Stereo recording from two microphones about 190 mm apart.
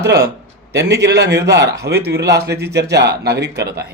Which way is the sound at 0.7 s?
60° right (ahead or behind).